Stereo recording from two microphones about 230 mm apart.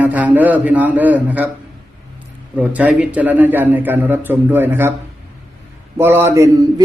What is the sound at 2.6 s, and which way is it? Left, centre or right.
A man's voice, centre.